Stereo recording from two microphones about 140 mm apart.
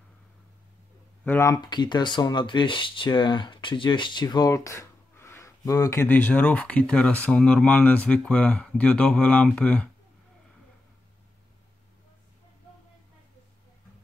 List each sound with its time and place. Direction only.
1.2 s speech: 15° left (ahead or behind)
1.6 s speech: 30° left (ahead or behind); by 9.8 s 10° left (ahead or behind)